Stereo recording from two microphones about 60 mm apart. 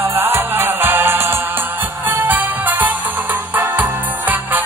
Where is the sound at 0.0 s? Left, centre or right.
Right.